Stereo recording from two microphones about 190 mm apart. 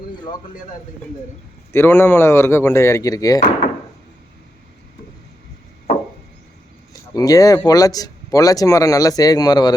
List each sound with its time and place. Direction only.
1.7 s speech: 10° left (ahead or behind)
7.1 s speech: 20° left (ahead or behind)